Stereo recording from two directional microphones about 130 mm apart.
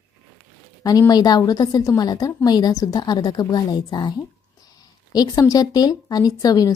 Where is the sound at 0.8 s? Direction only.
30° left (ahead or behind).